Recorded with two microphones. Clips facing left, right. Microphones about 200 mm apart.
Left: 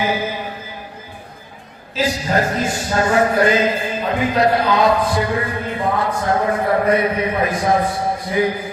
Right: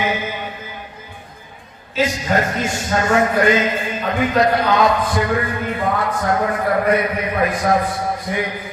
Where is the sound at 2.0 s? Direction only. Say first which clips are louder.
Even; 35° left (ahead or behind).